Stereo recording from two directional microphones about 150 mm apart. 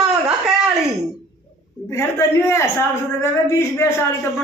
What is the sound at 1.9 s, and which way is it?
A woman's voice, 20° left (ahead or behind).